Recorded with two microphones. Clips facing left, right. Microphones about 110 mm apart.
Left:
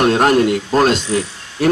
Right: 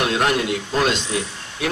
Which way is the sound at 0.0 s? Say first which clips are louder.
Left 8 dB; 45° left (ahead or behind).